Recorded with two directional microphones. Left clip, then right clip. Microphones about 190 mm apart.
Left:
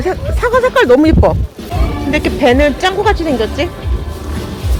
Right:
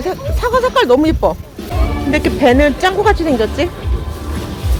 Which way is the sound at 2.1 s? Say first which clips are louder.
Even; 15° right (ahead or behind).